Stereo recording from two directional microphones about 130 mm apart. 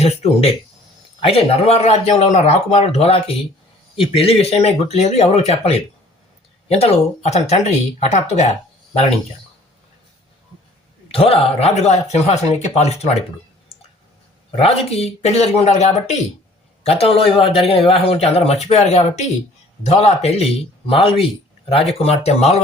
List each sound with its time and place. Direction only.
0.0 s speech: 50° left (ahead or behind)
11.1 s speech: 45° left (ahead or behind)
14.5 s speech: 50° left (ahead or behind)